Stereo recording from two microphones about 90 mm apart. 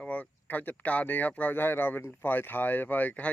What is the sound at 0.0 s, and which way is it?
Speech, 15° left (ahead or behind).